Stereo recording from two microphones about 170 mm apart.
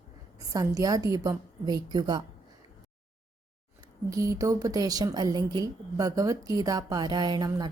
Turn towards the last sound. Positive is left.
turn(degrees=-25)  # may be behind; listen again after turning